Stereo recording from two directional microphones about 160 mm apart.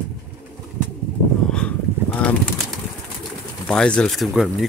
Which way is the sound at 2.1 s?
10° left (ahead or behind).